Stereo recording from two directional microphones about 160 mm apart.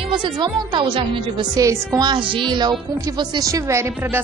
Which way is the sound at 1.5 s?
20° right (ahead or behind).